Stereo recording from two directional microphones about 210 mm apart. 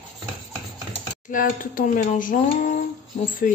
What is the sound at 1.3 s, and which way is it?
Speech, 40° left (ahead or behind).